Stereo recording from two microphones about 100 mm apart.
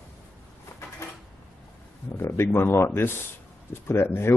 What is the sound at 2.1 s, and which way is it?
Speech, 25° left (ahead or behind).